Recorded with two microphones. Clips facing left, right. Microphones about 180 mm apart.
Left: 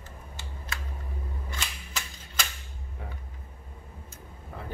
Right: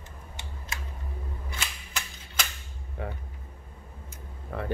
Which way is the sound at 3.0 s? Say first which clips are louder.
Right 8 dB; 75° right (ahead or behind).